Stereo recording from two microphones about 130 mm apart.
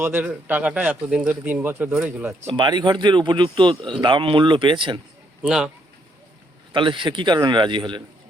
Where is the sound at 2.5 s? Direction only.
35° right (ahead or behind).